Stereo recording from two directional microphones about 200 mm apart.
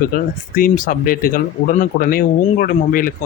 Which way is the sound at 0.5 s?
45° left (ahead or behind).